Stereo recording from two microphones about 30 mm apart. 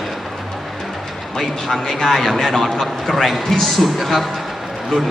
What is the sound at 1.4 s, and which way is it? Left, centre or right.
Speech, centre.